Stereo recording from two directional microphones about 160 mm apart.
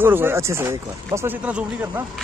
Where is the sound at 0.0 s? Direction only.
15° right (ahead or behind).